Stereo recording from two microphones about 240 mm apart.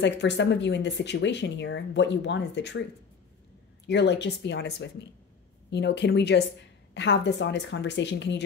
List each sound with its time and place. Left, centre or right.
0.0 s speech: left
3.8 s speech: left